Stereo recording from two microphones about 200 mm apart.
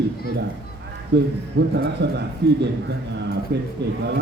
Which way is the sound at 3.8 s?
60° right (ahead or behind).